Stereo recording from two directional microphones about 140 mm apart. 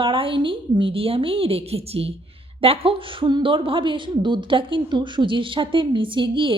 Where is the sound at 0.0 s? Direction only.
40° right (ahead or behind).